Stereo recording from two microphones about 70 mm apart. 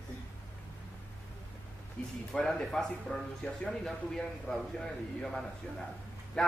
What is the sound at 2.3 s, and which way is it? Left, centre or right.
A man's voice, centre.